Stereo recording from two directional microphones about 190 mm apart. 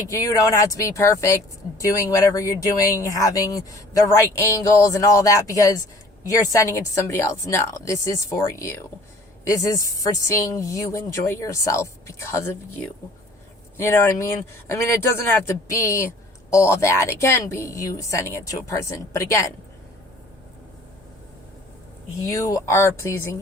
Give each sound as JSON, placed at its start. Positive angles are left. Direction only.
{"t": 0.1, "sound": "speech", "side_deg": 20}
{"t": 13.7, "sound": "speech", "side_deg": 15}
{"t": 15.4, "sound": "speech", "side_deg": 15}
{"t": 22.3, "sound": "speech", "side_deg": 15}